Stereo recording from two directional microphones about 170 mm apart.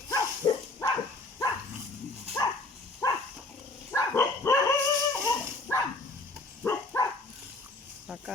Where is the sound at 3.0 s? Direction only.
20° left (ahead or behind).